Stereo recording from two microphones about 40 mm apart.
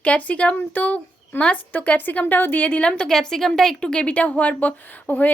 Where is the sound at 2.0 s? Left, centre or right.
Left.